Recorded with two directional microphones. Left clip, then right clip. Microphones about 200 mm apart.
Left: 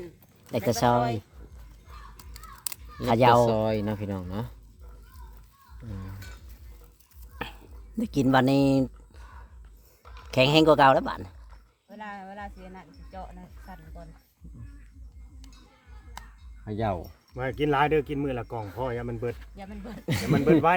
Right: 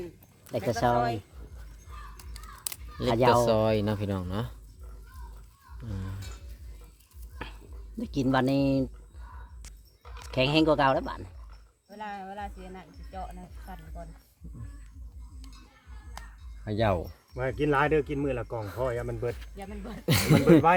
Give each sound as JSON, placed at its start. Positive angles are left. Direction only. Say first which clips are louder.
{"t": 0.7, "sound": "speech", "louder": "left 2 dB", "side_deg": 60}
{"t": 2.1, "sound": "a sound", "louder": "left 1 dB", "side_deg": 20}
{"t": 3.1, "sound": "speech", "louder": "left 3 dB", "side_deg": 55}
{"t": 3.4, "sound": "speech", "louder": "even", "side_deg": -15}
{"t": 7.4, "sound": "a sound", "louder": "left 5 dB", "side_deg": 55}
{"t": 7.9, "sound": "speech", "louder": "left 4 dB", "side_deg": 60}
{"t": 10.3, "sound": "speech", "louder": "left 5 dB", "side_deg": 55}
{"t": 11.9, "sound": "speech", "louder": "right 1 dB", "side_deg": 25}
{"t": 16.6, "sound": "speech", "louder": "right 3 dB", "side_deg": -25}
{"t": 17.3, "sound": "speech", "louder": "left 1 dB", "side_deg": 55}
{"t": 19.5, "sound": "speech", "louder": "right 1 dB", "side_deg": 20}
{"t": 20.1, "sound": "speech", "louder": "right 3 dB", "side_deg": -25}